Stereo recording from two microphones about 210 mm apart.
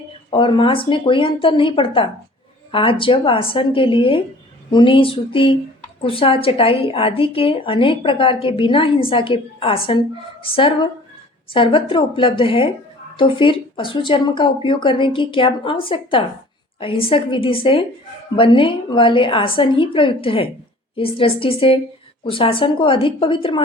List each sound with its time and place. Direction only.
0.3 s a woman's voice: 25° left (ahead or behind)